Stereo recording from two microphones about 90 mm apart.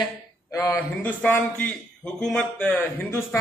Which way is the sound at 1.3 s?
15° left (ahead or behind).